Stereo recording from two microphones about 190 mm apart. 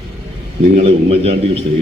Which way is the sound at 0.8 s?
30° right (ahead or behind).